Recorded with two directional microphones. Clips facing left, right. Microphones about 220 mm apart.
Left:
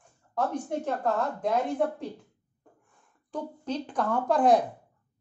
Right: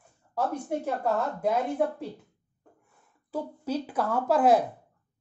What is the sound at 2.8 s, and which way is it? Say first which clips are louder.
A woman's voice: right 1 dB; 5° right (ahead or behind).